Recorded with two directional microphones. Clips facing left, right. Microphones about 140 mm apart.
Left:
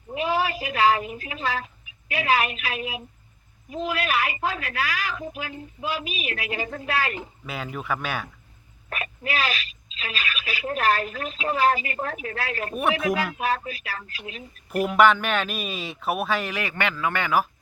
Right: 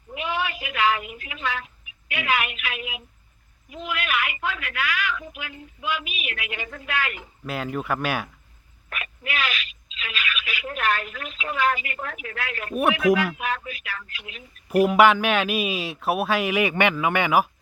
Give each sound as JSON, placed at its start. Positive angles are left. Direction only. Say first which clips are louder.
{"t": 0.1, "sound": "a woman's voice", "louder": "left 4 dB", "side_deg": 35}
{"t": 7.4, "sound": "speech", "louder": "right 5 dB", "side_deg": 0}
{"t": 8.9, "sound": "a woman's voice", "louder": "left 3 dB", "side_deg": 35}
{"t": 14.7, "sound": "speech", "louder": "right 2 dB", "side_deg": -5}